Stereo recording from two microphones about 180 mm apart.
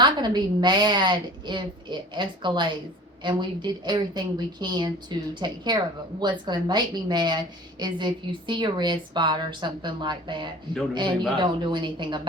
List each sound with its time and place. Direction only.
0.0 s a woman's voice: 25° right (ahead or behind)